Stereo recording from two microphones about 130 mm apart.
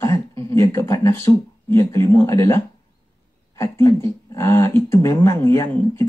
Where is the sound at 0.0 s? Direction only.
20° left (ahead or behind).